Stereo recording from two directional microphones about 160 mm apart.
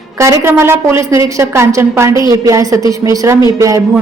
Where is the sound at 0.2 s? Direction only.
15° right (ahead or behind).